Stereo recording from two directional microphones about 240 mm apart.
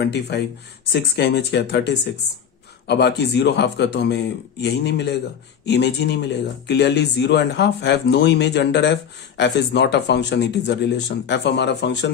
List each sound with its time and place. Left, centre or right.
0.0 s speech: left